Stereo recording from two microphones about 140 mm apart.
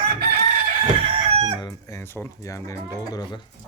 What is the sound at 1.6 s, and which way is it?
Speech, 25° left (ahead or behind).